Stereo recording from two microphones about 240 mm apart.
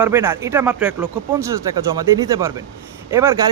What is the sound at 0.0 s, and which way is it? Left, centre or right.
Speech, centre.